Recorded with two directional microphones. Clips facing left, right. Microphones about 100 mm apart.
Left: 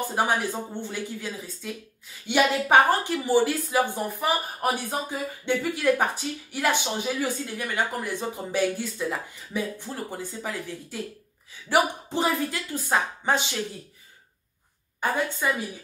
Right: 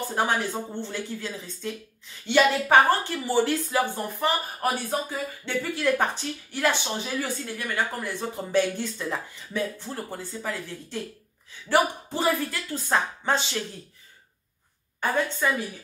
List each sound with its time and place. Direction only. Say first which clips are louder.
0.1 s speech: right 1 dB; 15° left (ahead or behind)
15.0 s a woman's voice: right 1 dB; 10° left (ahead or behind)